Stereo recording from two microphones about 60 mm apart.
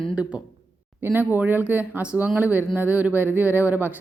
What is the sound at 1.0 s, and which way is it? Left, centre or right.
A woman's voice, right.